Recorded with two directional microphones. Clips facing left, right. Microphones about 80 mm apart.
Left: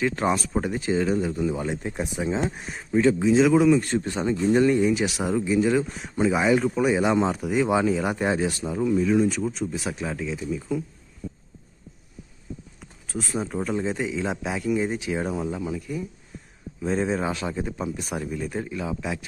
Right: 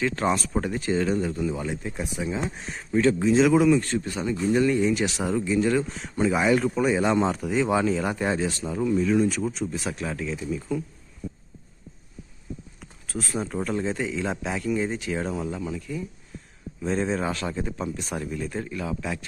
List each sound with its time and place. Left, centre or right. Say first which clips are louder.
0.0 s speech: left 1 dB; centre
1.3 s speech: left 2 dB; left
2.6 s speech: left 1 dB; centre
3.8 s speech: left 2 dB; left
4.8 s speech: left 1 dB; centre
8.8 s speech: left 1 dB; centre
12.8 s speech: left 1 dB; centre